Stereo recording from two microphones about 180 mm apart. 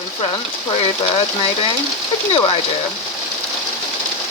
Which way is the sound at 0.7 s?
30° left (ahead or behind).